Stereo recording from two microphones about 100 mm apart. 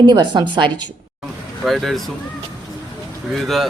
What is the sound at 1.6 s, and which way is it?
Speech, centre (ahead or behind).